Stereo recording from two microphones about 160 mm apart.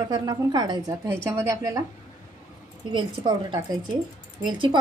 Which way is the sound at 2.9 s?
30° right (ahead or behind).